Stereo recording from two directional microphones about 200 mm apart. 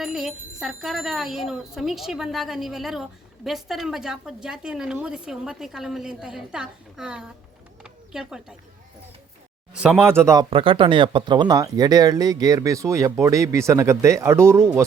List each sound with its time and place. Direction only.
0.0 s speech: centre (ahead or behind)
9.7 s speech: 5° right (ahead or behind)
10.5 s speech: 25° right (ahead or behind)